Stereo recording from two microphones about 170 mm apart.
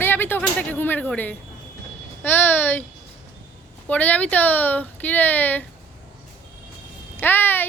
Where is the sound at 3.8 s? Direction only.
10° left (ahead or behind).